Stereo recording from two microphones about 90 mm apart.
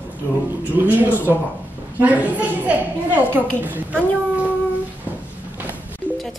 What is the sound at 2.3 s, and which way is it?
A woman's voice, 15° right (ahead or behind).